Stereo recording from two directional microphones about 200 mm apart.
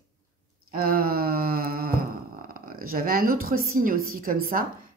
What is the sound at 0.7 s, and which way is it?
Speech, 45° right (ahead or behind).